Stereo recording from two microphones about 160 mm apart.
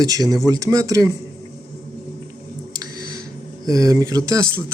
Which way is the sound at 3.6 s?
20° right (ahead or behind).